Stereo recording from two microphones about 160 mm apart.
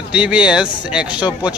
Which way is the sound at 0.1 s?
5° right (ahead or behind).